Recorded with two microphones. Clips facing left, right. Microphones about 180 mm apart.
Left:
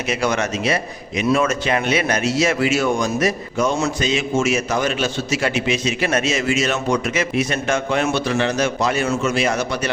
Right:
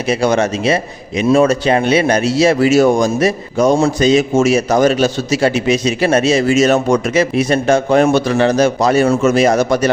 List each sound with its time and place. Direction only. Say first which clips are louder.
0.1 s a man's voice: right 7 dB; 30° right (ahead or behind)